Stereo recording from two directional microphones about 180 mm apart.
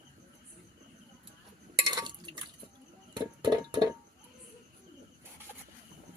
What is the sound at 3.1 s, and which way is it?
Music, 25° right (ahead or behind).